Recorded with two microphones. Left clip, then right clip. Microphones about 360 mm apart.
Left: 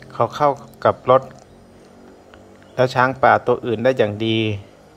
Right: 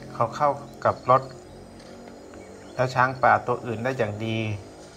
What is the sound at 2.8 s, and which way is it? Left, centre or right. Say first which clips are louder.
Speech: left 6 dB; centre.